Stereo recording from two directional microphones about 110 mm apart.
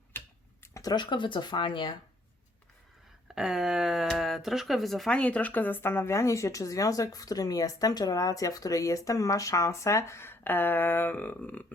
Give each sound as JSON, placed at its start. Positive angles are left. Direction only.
{"t": 0.1, "sound": "typing", "side_deg": 20}
{"t": 0.6, "sound": "speech", "side_deg": 30}
{"t": 3.3, "sound": "a sound", "side_deg": -5}
{"t": 4.0, "sound": "speech", "side_deg": 5}